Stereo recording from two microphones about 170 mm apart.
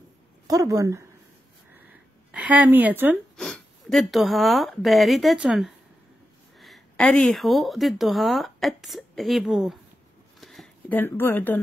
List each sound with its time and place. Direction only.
0.5 s speech: 20° right (ahead or behind)
1.9 s a sound: 10° right (ahead or behind)
3.3 s a woman's voice: centre (ahead or behind)